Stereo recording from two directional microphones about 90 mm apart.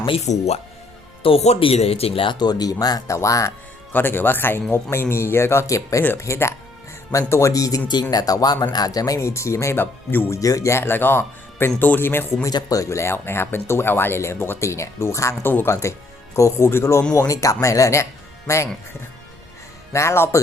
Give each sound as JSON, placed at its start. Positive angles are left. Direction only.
{"t": 1.2, "sound": "speech", "side_deg": 90}
{"t": 3.9, "sound": "speech", "side_deg": 20}
{"t": 10.3, "sound": "speech", "side_deg": 40}
{"t": 12.5, "sound": "speech", "side_deg": 45}
{"t": 19.9, "sound": "speech", "side_deg": 30}